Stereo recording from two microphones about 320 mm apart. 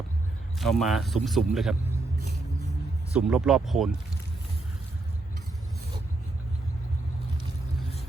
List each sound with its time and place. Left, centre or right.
0.6 s a man's voice: centre
2.1 s music: left
3.2 s a man's voice: centre